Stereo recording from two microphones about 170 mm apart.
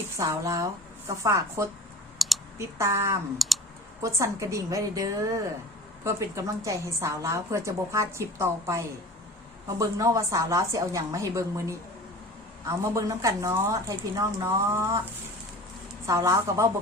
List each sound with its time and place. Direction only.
0.2 s a woman's voice: 20° right (ahead or behind)
2.2 s clicking: centre (ahead or behind)
2.6 s a woman's voice: 15° right (ahead or behind)
3.3 s clicking: centre (ahead or behind)
4.0 s a woman's voice: 15° right (ahead or behind)
16.0 s a woman's voice: 15° right (ahead or behind)